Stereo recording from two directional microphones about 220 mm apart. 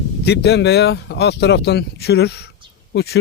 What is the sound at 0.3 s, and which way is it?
Speech, 50° left (ahead or behind).